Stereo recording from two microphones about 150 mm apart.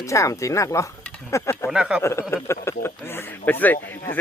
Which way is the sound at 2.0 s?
15° left (ahead or behind).